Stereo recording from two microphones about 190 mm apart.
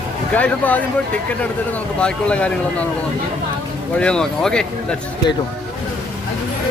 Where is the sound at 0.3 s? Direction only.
10° left (ahead or behind).